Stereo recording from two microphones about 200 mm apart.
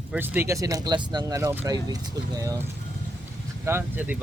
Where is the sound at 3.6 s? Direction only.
10° right (ahead or behind).